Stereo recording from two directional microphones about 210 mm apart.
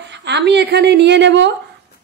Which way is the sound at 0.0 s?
55° right (ahead or behind).